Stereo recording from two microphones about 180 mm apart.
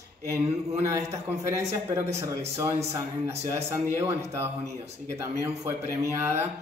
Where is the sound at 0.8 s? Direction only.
15° right (ahead or behind).